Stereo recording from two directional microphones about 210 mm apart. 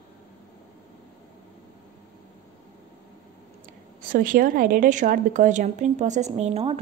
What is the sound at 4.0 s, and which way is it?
Speech, 40° right (ahead or behind).